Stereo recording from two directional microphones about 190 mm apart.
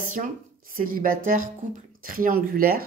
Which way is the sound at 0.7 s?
50° right (ahead or behind).